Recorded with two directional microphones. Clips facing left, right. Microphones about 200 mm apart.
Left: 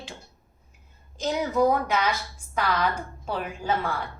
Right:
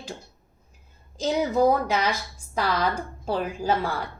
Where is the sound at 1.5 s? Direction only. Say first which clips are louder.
Even; 30° right (ahead or behind).